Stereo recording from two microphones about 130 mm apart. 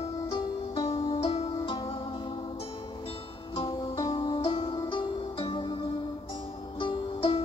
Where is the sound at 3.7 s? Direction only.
30° left (ahead or behind).